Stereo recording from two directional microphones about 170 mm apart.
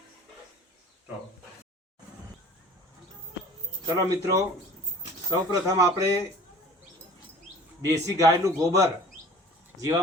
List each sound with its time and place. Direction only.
3.8 s a man's voice: 20° right (ahead or behind)
7.8 s a man's voice: 20° right (ahead or behind)